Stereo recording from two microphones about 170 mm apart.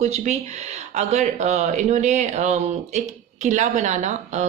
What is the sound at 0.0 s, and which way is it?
A woman's voice, 40° right (ahead or behind).